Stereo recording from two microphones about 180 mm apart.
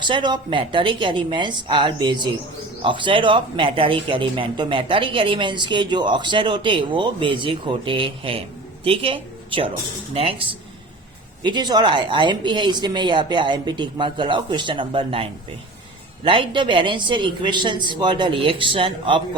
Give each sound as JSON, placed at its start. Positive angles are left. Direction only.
{"t": 0.0, "sound": "speech", "side_deg": -25}